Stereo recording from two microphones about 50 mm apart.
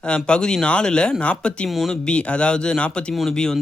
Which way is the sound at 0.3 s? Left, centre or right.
Centre.